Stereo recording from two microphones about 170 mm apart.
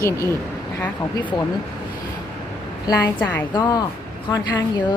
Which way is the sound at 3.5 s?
25° left (ahead or behind).